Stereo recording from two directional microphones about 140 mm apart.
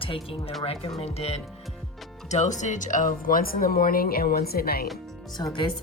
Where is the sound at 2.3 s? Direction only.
60° left (ahead or behind); by 4.8 s 90° left.